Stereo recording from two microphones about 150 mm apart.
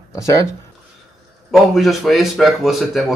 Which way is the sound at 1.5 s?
Centre (ahead or behind).